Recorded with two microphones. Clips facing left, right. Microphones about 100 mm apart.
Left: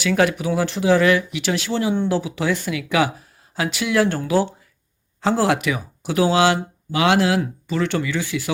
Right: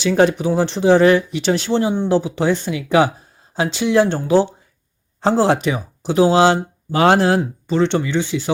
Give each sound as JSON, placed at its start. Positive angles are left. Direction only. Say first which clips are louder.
{"t": 0.0, "sound": "speech", "louder": "right 4 dB", "side_deg": -30}